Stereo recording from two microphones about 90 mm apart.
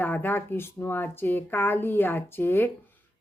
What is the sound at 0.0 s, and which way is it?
Speech, 20° left (ahead or behind).